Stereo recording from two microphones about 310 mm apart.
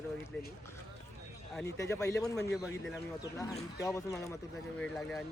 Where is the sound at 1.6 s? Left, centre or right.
Centre.